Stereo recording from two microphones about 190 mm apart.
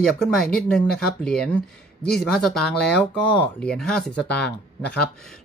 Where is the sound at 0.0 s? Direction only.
Centre (ahead or behind).